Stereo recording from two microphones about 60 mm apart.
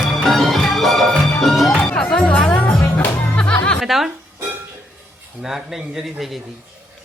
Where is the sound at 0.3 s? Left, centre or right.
Centre.